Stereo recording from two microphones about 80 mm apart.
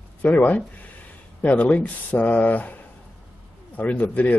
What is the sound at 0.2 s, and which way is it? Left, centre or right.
Speech, centre.